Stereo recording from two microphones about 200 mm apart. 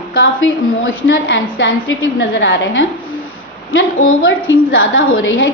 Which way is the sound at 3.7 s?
90° left.